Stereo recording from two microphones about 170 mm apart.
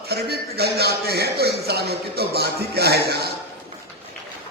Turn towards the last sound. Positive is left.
turn(degrees=-70)  # may be behind; listen again after turning